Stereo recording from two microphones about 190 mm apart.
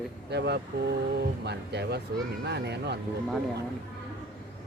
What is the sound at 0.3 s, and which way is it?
Speech, 60° right (ahead or behind).